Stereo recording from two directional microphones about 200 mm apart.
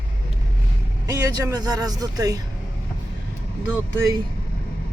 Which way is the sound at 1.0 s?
15° right (ahead or behind).